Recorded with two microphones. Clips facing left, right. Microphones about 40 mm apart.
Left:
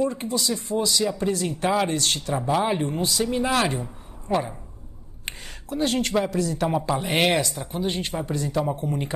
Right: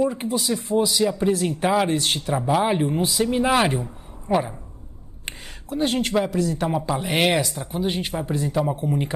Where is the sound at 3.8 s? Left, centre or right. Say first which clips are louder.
Right 2 dB; centre.